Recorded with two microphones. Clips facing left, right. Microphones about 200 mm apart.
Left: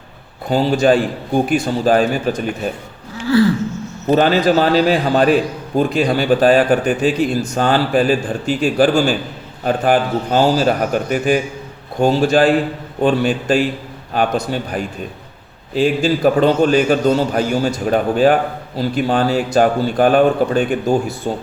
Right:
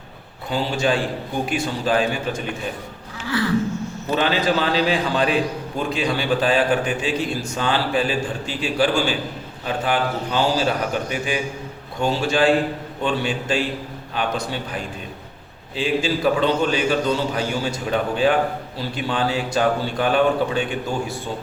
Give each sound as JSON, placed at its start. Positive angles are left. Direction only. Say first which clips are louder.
{"t": 0.5, "sound": "a man's voice", "louder": "left 8 dB", "side_deg": 40}
{"t": 4.1, "sound": "a man's voice", "louder": "left 7 dB", "side_deg": 40}
{"t": 15.7, "sound": "a man's voice", "louder": "left 6 dB", "side_deg": 45}